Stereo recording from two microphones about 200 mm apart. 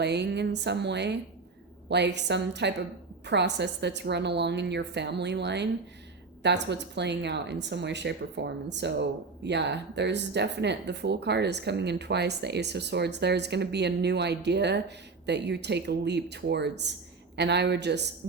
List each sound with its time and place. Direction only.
0.0 s speech: 60° right (ahead or behind)